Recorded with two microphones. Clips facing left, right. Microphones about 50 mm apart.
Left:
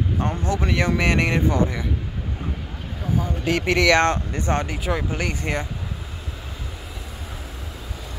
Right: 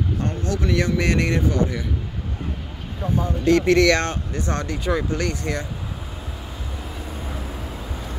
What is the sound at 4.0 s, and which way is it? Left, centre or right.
Speech, left.